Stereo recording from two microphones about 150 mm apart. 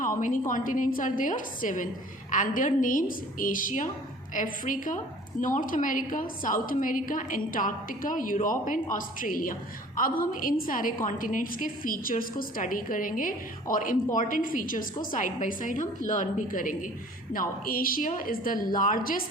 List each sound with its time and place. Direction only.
0.0 s a woman's voice: 60° left (ahead or behind)